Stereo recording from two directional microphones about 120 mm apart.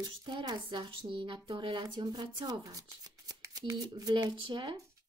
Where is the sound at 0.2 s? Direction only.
40° right (ahead or behind).